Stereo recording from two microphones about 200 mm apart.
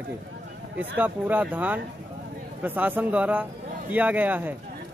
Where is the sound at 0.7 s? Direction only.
10° right (ahead or behind).